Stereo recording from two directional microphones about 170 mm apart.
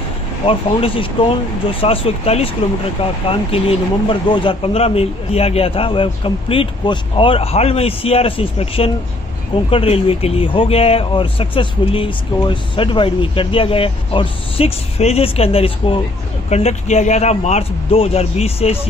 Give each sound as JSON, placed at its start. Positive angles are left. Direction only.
{"t": 0.5, "sound": "speech", "side_deg": 30}